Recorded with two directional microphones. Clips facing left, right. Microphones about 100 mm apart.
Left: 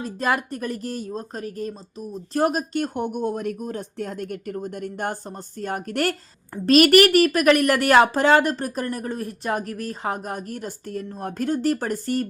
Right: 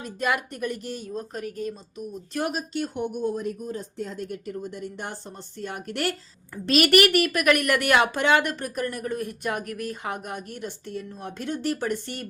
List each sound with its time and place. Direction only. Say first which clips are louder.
0.0 s speech: left 3 dB; 35° left (ahead or behind); by 5.1 s 55° left (ahead or behind)
5.5 s a woman's voice: left 5 dB; 45° left (ahead or behind)